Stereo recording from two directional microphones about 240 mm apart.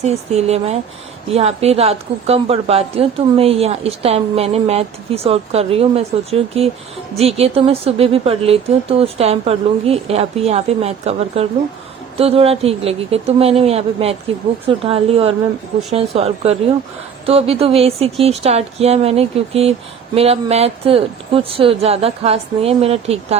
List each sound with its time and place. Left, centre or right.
0.0 s a woman's voice: right